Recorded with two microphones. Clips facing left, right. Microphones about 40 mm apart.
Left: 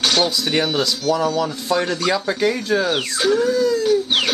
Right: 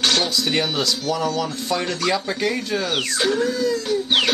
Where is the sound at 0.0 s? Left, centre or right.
Centre.